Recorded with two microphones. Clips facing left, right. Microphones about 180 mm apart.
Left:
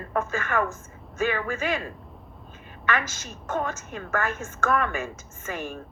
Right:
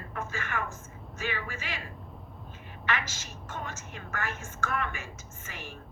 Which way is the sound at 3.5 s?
55° left (ahead or behind).